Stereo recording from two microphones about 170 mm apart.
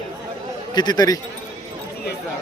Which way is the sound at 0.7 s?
25° left (ahead or behind).